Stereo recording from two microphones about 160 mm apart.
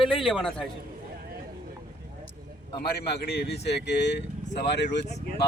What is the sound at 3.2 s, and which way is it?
Speech, 90° left.